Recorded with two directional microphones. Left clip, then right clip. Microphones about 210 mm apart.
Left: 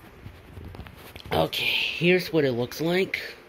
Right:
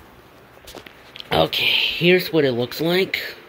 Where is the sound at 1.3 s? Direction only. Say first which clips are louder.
Right 6 dB; 5° right (ahead or behind).